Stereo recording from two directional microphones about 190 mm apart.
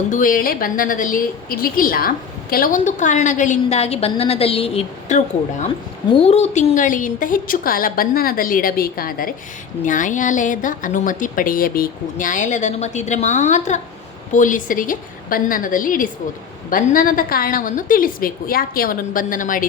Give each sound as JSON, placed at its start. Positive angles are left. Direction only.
{"t": 0.1, "sound": "speech", "side_deg": 45}
{"t": 6.2, "sound": "a woman's voice", "side_deg": 35}